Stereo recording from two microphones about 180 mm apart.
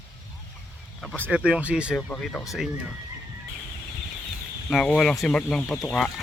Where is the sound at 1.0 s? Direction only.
10° right (ahead or behind).